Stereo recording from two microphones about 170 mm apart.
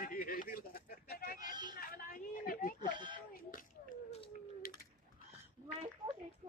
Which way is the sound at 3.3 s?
55° left (ahead or behind).